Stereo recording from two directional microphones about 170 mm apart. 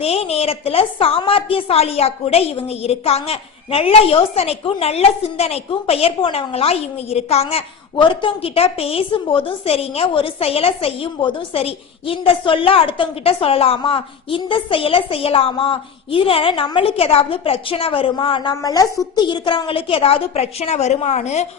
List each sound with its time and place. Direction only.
0.0 s a woman's voice: 35° left (ahead or behind)